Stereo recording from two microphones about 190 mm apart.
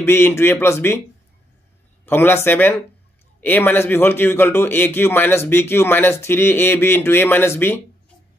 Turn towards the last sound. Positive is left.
turn(degrees=10)  # may be behind; listen again after turning